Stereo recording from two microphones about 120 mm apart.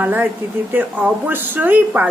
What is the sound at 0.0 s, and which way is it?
Speech, 15° right (ahead or behind).